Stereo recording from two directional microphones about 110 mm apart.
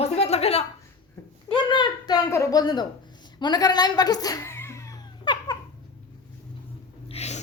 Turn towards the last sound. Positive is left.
turn(degrees=75)  # may be behind; listen again after turning